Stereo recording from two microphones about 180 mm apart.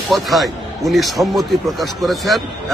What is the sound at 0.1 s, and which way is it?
A man's voice, centre (ahead or behind).